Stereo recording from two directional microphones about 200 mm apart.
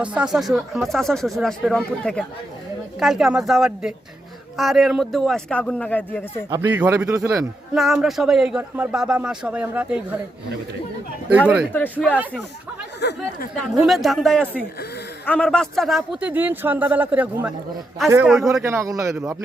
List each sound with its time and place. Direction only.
0.0 s a man's voice: 5° right (ahead or behind)
6.5 s speech: 10° right (ahead or behind)
7.7 s a man's voice: centre (ahead or behind)
11.3 s speech: 5° right (ahead or behind)
11.7 s speech: 10° left (ahead or behind)
13.0 s speech: 55° left (ahead or behind)
13.7 s a man's voice: centre (ahead or behind)
18.6 s speech: 15° right (ahead or behind)